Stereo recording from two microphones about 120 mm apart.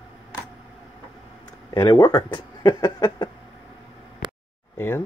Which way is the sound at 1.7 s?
30° left (ahead or behind).